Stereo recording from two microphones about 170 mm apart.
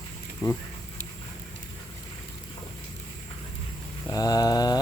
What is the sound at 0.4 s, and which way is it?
Speech, 20° left (ahead or behind).